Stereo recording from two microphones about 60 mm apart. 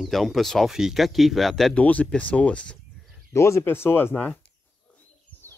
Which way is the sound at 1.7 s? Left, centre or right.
Left.